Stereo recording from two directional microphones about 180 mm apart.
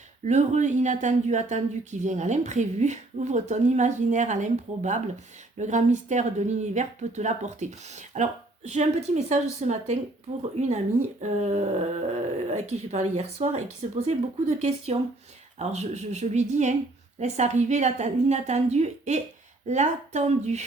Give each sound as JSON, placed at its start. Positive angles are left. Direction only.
{"t": 0.3, "sound": "speech", "side_deg": -40}
{"t": 15.5, "sound": "speech", "side_deg": -40}